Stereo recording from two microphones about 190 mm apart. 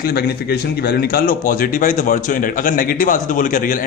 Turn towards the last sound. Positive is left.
turn(degrees=45)  # may be behind; listen again after turning